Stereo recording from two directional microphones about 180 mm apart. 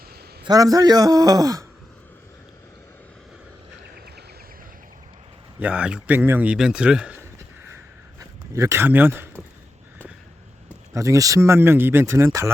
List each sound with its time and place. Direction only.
0.4 s speech: 20° right (ahead or behind)
5.5 s speech: 5° right (ahead or behind)
10.9 s speech: 15° right (ahead or behind)